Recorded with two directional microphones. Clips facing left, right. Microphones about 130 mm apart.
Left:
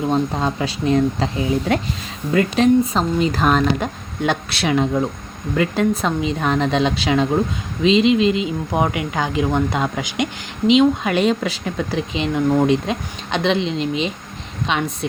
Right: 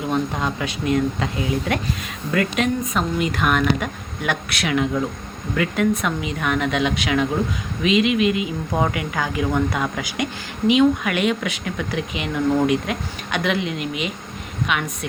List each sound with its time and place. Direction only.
0.1 s speech: 30° left (ahead or behind)